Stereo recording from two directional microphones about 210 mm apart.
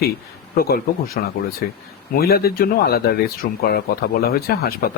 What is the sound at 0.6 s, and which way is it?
Speech, 45° left (ahead or behind).